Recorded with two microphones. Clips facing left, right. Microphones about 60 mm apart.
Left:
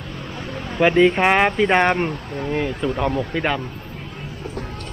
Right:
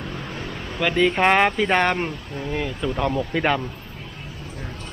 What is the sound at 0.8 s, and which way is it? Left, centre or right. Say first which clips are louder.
Speech: left 6 dB; left.